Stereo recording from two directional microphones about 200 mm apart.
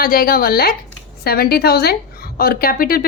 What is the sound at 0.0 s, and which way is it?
A woman's voice, 45° left (ahead or behind).